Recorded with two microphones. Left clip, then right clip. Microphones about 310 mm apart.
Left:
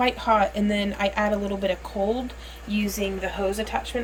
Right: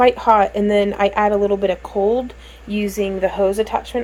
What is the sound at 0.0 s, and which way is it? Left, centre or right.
Speech, centre.